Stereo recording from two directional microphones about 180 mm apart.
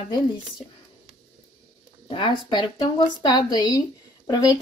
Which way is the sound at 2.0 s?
30° left (ahead or behind).